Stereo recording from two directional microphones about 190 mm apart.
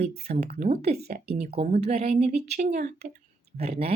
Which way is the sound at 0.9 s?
55° right (ahead or behind).